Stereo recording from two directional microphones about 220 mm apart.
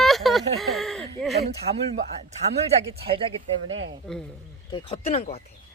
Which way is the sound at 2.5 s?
30° right (ahead or behind).